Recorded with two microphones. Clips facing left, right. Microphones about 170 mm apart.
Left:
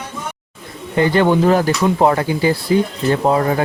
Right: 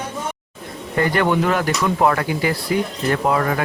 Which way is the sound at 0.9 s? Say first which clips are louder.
Left 4 dB; 25° left (ahead or behind).